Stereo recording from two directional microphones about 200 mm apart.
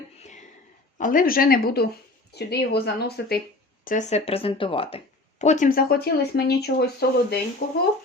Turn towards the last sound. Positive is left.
turn(degrees=50)  # may be behind; listen again after turning